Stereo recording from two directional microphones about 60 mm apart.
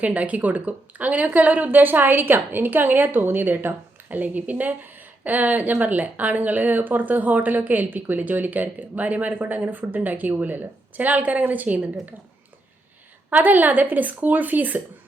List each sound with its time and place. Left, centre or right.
0.0 s speech: right
13.3 s speech: right